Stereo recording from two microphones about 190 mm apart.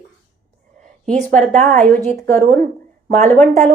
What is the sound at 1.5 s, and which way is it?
Speech, 40° right (ahead or behind).